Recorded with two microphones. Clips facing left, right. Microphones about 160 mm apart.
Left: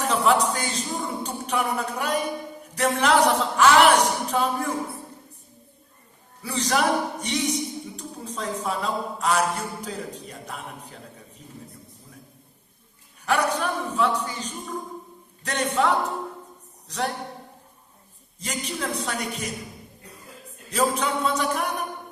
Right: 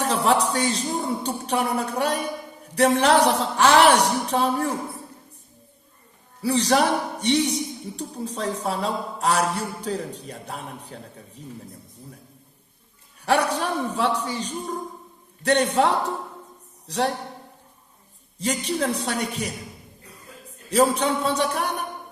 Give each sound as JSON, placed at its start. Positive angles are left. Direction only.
{"t": 0.0, "sound": "a man's voice", "side_deg": -35}
{"t": 6.4, "sound": "a man's voice", "side_deg": -35}
{"t": 13.6, "sound": "a man's voice", "side_deg": -35}
{"t": 18.3, "sound": "a man's voice", "side_deg": -35}
{"t": 20.7, "sound": "a man's voice", "side_deg": -35}